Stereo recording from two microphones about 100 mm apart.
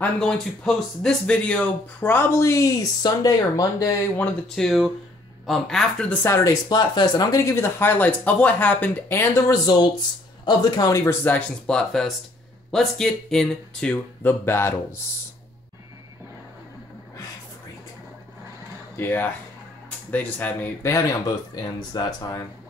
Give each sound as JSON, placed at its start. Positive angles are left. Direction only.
{"t": 0.0, "sound": "speech", "side_deg": 5}
{"t": 4.6, "sound": "speech", "side_deg": 0}
{"t": 6.2, "sound": "speech", "side_deg": 30}
{"t": 9.3, "sound": "speech", "side_deg": 35}
{"t": 10.9, "sound": "speech", "side_deg": 30}
{"t": 11.2, "sound": "speech", "side_deg": 10}
{"t": 18.9, "sound": "speech", "side_deg": 20}
{"t": 21.9, "sound": "speech", "side_deg": 45}